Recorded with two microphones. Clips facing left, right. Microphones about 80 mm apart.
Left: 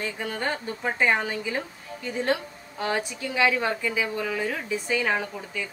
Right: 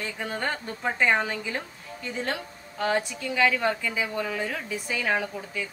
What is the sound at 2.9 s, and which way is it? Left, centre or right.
A woman's voice, left.